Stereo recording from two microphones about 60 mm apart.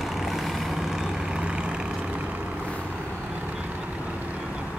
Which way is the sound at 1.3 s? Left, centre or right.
Centre.